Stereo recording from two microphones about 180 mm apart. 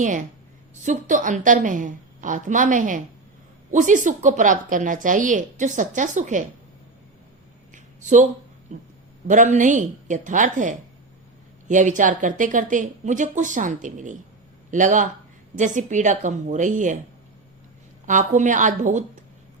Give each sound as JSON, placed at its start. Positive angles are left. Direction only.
{"t": 0.9, "sound": "speech", "side_deg": -45}
{"t": 7.7, "sound": "a sound", "side_deg": -45}
{"t": 9.2, "sound": "speech", "side_deg": -45}
{"t": 18.0, "sound": "speech", "side_deg": -45}